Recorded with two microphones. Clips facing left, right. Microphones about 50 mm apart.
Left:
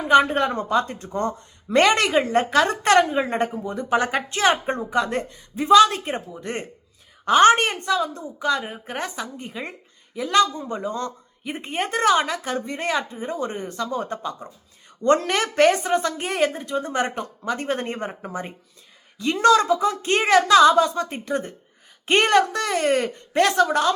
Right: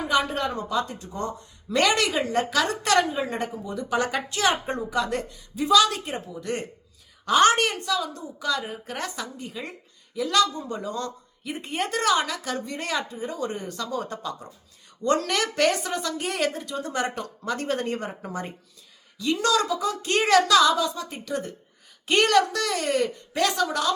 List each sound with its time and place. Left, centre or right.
0.1 s a woman's voice: left; by 18.5 s centre
19.1 s speech: left